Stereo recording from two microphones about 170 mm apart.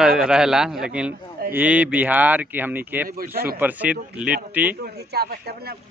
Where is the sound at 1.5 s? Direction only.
10° right (ahead or behind).